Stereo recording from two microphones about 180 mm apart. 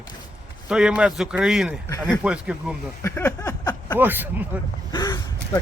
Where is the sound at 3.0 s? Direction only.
15° left (ahead or behind).